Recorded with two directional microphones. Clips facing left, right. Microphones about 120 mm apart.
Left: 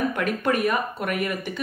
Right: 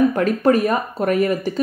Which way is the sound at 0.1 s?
35° right (ahead or behind).